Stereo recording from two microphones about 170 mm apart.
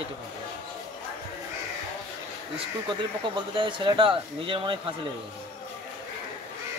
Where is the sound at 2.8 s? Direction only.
30° right (ahead or behind).